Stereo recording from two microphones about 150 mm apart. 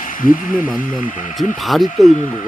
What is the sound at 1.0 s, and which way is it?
Speech, 60° left (ahead or behind).